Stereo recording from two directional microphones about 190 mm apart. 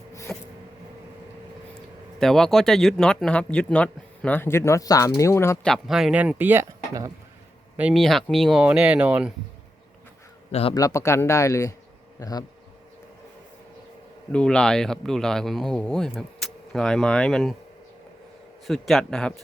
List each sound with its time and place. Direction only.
0.3 s a sound: 15° left (ahead or behind)
2.1 s speech: centre (ahead or behind)
5.6 s speech: centre (ahead or behind); by 7.1 s 15° right (ahead or behind)
7.8 s speech: 5° right (ahead or behind)
10.5 s a man's voice: 30° left (ahead or behind)
10.8 s speech: 15° left (ahead or behind)
14.3 s speech: 5° left (ahead or behind)
18.6 s speech: centre (ahead or behind)